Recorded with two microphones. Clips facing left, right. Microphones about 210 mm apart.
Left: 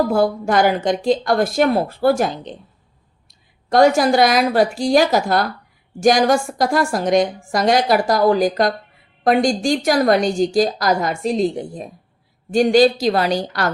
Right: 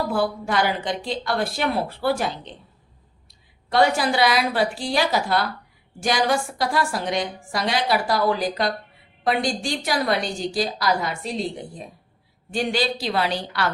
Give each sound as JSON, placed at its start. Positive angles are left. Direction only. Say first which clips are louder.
{"t": 0.1, "sound": "a woman's voice", "louder": "left 6 dB", "side_deg": 45}